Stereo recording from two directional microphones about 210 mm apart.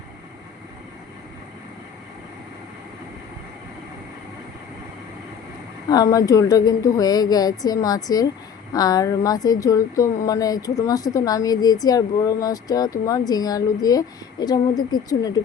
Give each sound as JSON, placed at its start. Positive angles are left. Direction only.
{"t": 5.9, "sound": "speech", "side_deg": 15}